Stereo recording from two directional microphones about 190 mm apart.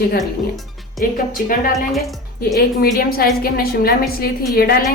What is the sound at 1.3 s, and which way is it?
Speech, 45° left (ahead or behind).